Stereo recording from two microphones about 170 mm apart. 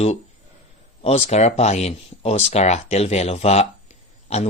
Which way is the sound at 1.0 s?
40° left (ahead or behind).